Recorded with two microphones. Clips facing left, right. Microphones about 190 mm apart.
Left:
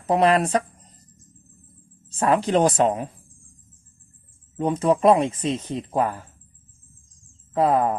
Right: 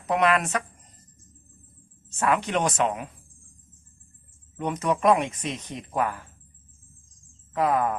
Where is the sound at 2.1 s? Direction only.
30° left (ahead or behind).